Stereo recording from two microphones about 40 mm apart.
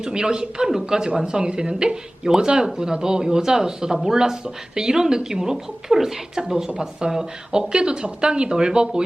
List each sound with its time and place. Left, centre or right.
0.0 s a woman's voice: centre